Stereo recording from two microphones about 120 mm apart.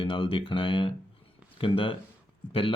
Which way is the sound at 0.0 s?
45° left (ahead or behind).